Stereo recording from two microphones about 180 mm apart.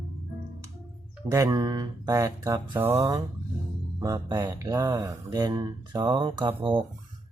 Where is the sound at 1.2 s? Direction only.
15° right (ahead or behind).